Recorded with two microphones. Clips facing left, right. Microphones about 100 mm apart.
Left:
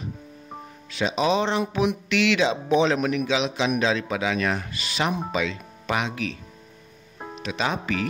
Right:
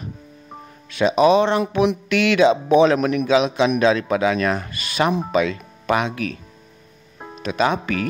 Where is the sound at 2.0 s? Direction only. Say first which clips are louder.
Right 7 dB; 50° right (ahead or behind).